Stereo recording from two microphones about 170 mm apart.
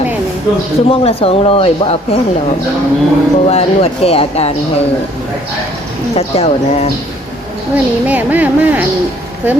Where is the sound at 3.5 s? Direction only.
35° left (ahead or behind).